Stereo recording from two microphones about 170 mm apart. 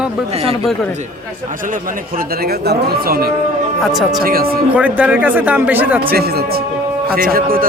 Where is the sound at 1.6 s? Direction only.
55° right (ahead or behind).